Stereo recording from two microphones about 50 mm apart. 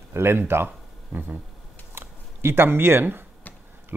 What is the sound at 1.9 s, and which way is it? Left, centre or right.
Speech, right.